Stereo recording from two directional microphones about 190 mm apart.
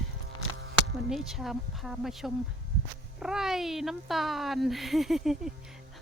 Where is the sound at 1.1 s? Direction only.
Centre (ahead or behind).